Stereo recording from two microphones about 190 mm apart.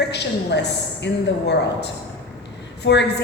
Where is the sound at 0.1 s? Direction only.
65° left (ahead or behind).